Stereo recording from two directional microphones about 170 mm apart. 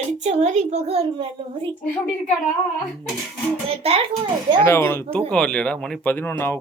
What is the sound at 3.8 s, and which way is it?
Speech, 35° right (ahead or behind).